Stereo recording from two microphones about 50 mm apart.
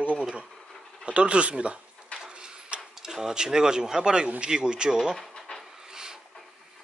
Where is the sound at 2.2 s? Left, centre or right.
Centre.